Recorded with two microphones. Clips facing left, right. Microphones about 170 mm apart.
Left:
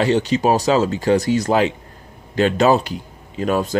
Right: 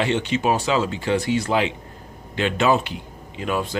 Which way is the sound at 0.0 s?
40° left (ahead or behind).